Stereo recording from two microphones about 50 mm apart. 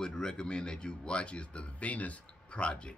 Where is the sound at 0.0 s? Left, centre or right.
Centre.